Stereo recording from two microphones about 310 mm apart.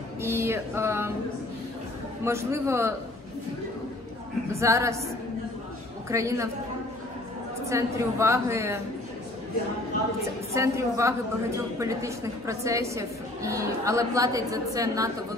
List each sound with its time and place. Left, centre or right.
0.2 s a woman's voice: centre
2.2 s a woman's voice: centre
4.5 s a woman's voice: centre
6.0 s a woman's voice: centre
7.6 s a woman's voice: centre
10.5 s a woman's voice: centre